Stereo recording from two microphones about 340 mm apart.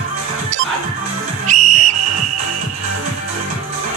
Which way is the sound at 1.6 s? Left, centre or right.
Right.